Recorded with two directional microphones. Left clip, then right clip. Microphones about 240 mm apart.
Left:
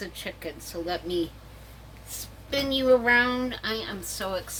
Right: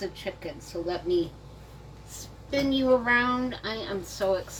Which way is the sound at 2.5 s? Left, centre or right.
Left.